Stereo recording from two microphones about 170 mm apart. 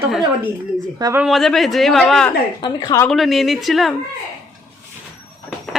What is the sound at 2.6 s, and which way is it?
Speech, 25° left (ahead or behind).